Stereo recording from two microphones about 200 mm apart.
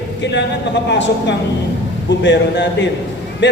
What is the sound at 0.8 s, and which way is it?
A man's voice, 65° left (ahead or behind).